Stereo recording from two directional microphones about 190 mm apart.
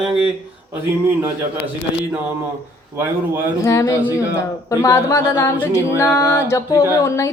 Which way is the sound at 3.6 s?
15° left (ahead or behind).